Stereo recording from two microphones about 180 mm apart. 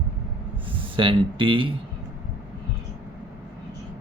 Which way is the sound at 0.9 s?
30° right (ahead or behind).